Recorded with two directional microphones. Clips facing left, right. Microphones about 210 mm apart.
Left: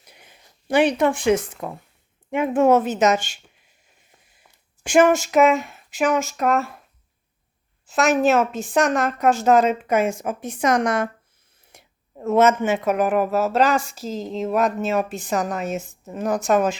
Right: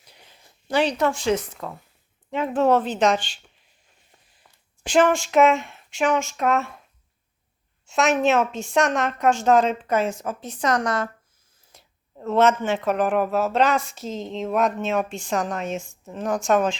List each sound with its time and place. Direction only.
0.1 s a sound: 15° left (ahead or behind)
0.8 s speech: 55° left (ahead or behind)
1.3 s a woman's voice: 10° left (ahead or behind)
2.6 s a woman's voice: 10° left (ahead or behind)
3.2 s speech: 45° left (ahead or behind)
4.4 s a sound: 10° left (ahead or behind)
5.3 s speech: centre (ahead or behind)
7.9 s a woman's voice: centre (ahead or behind)